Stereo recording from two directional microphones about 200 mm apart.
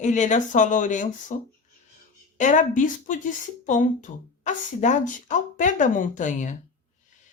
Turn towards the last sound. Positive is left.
turn(degrees=40)  # may be behind; listen again after turning